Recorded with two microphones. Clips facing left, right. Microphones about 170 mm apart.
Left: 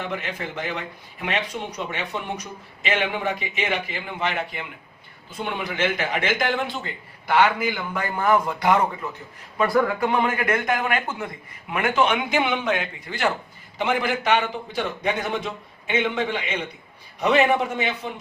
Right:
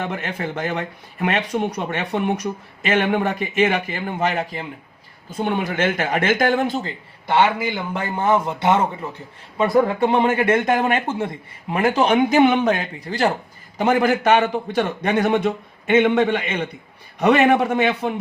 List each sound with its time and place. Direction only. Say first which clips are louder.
0.0 s speech: right 4 dB; 50° right (ahead or behind)
7.3 s a man's voice: right 2 dB; 25° right (ahead or behind); by 18.1 s 60° right (ahead or behind)